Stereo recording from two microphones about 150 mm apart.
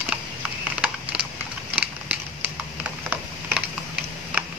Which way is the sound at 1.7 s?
10° right (ahead or behind).